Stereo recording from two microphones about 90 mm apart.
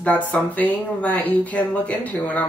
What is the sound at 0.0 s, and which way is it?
Speech, 15° left (ahead or behind).